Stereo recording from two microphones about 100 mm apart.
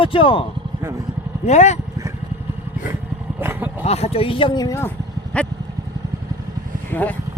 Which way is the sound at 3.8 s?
90° left.